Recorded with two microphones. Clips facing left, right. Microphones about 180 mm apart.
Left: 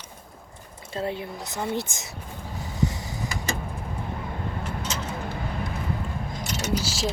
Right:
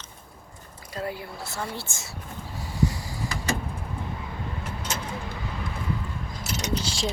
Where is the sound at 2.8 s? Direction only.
20° left (ahead or behind).